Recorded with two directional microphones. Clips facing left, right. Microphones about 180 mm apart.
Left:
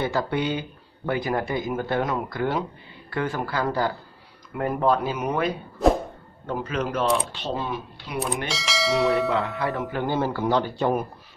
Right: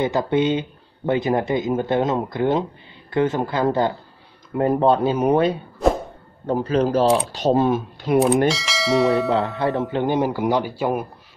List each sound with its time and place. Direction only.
0.0 s a man's voice: 20° right (ahead or behind)
7.3 s speech: 45° right (ahead or behind)
8.5 s speech: centre (ahead or behind)
9.6 s a man's voice: 35° right (ahead or behind)
9.8 s speech: 20° right (ahead or behind)